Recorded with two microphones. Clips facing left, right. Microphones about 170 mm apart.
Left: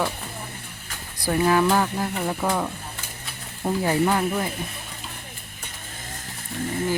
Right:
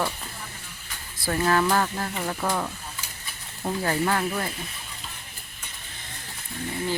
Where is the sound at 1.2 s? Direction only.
10° left (ahead or behind).